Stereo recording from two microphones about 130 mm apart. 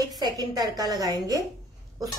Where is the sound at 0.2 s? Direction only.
30° right (ahead or behind).